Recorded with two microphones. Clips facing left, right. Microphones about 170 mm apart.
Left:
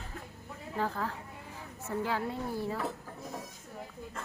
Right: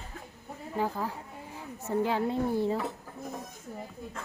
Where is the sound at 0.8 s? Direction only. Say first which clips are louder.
Right 2 dB; 15° right (ahead or behind).